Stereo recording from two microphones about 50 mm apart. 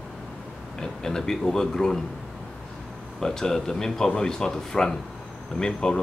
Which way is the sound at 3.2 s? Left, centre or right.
Centre.